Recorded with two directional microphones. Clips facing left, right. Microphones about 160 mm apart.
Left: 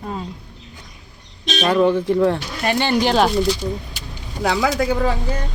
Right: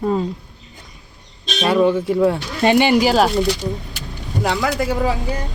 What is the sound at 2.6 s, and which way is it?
Speech, 15° right (ahead or behind).